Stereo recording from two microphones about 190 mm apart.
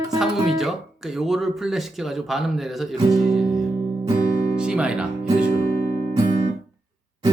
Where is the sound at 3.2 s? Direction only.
Centre (ahead or behind).